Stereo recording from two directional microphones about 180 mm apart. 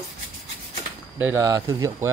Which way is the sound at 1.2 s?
15° right (ahead or behind).